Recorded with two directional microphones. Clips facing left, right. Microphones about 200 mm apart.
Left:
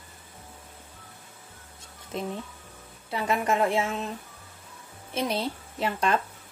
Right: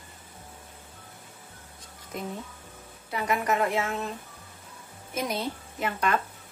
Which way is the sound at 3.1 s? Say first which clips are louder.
Left 1 dB; 25° left (ahead or behind).